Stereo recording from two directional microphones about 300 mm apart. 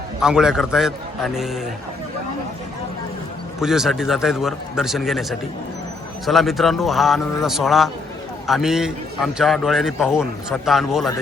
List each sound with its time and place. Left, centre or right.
0.2 s a man's voice: centre
3.6 s a man's voice: centre
6.2 s a man's voice: centre